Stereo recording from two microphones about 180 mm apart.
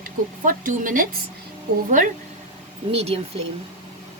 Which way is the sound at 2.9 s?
35° right (ahead or behind).